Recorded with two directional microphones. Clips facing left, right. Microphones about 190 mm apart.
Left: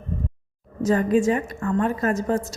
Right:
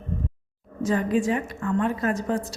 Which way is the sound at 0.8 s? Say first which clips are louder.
Left 4 dB; 45° left (ahead or behind).